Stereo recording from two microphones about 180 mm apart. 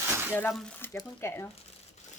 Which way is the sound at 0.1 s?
10° right (ahead or behind).